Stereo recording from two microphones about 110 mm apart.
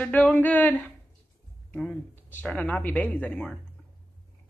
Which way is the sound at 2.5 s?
10° left (ahead or behind).